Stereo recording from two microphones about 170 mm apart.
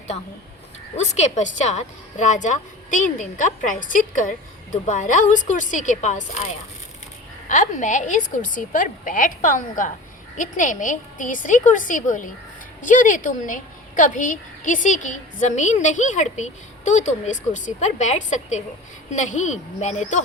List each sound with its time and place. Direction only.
0.9 s a woman's voice: 45° left (ahead or behind)
7.4 s a woman's voice: 45° left (ahead or behind)